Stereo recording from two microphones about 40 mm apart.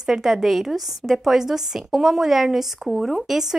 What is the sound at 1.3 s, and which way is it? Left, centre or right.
A woman's voice, centre.